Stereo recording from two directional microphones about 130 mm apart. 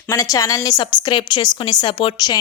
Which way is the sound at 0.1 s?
25° left (ahead or behind).